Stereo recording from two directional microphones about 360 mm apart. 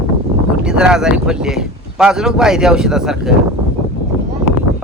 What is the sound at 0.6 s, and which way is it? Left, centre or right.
Speech, centre.